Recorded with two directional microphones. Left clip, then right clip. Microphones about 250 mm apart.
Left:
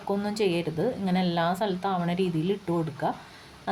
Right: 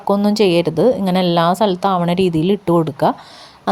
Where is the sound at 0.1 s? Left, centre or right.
Right.